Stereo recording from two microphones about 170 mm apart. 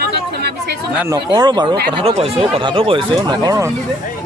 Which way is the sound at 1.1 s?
25° right (ahead or behind).